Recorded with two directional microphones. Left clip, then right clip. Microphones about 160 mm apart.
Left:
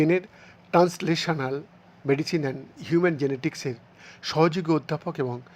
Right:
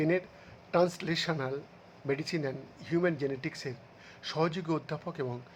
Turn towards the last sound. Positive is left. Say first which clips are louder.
# left 8 dB
turn(degrees=25)  # may be behind; listen again after turning